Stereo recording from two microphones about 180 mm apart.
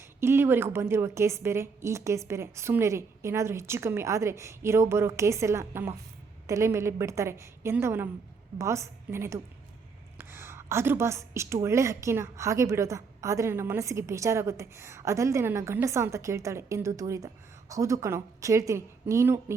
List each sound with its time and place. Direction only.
0.2 s a woman's voice: 15° right (ahead or behind)